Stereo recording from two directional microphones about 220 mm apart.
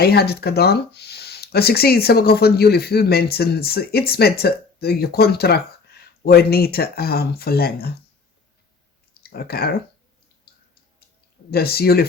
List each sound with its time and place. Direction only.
0.0 s speech: 45° left (ahead or behind)
9.2 s speech: 45° left (ahead or behind)
11.5 s speech: 45° left (ahead or behind)